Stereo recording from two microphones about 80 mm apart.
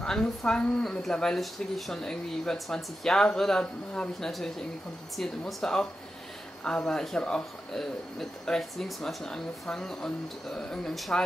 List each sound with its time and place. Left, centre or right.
0.0 s speech: centre